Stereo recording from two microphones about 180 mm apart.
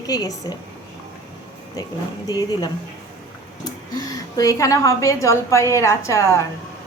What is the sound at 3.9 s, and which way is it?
A woman's voice, 20° left (ahead or behind).